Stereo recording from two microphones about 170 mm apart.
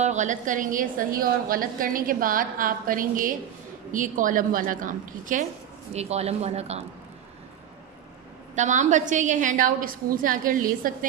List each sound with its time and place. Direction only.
0.0 s a woman's voice: 45° right (ahead or behind)
5.9 s speech: 40° right (ahead or behind)
8.5 s a woman's voice: 45° right (ahead or behind)